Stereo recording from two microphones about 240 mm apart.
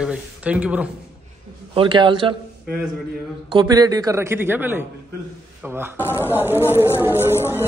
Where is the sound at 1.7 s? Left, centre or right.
Right.